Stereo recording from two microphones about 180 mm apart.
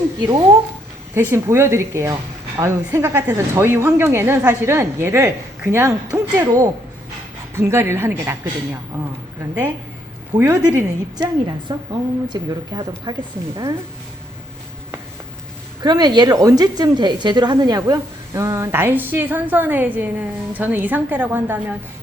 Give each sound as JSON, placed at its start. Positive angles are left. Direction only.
{"t": 0.2, "sound": "speech", "side_deg": -25}
{"t": 1.1, "sound": "speech", "side_deg": -10}
{"t": 10.3, "sound": "speech", "side_deg": -10}
{"t": 15.8, "sound": "speech", "side_deg": -25}